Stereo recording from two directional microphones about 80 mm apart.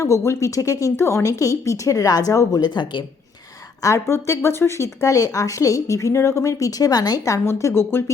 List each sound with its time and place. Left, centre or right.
0.0 s speech: left
2.6 s speech: left
3.8 s speech: left
7.3 s speech: left